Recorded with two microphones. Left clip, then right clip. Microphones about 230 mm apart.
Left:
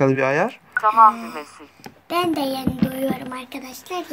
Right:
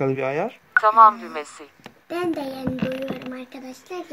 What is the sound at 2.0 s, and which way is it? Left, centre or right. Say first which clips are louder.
Speech: left 5 dB; left.